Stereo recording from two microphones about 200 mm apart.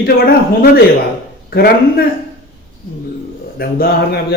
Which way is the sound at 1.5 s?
50° left (ahead or behind).